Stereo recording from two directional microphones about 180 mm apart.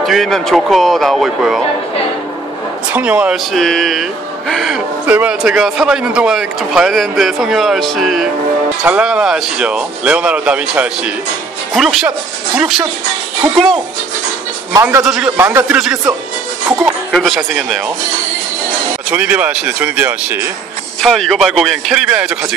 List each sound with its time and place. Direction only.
0.0 s speech: centre (ahead or behind)
2.9 s speech: 10° right (ahead or behind)
14.7 s speech: 15° right (ahead or behind)
15.0 s speech: centre (ahead or behind)
17.1 s speech: 5° left (ahead or behind)
19.0 s speech: 5° right (ahead or behind)